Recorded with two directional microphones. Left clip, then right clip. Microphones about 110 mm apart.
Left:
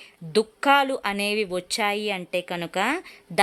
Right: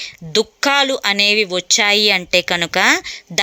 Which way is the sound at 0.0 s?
20° right (ahead or behind).